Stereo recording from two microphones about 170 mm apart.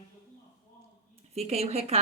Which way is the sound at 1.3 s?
40° right (ahead or behind).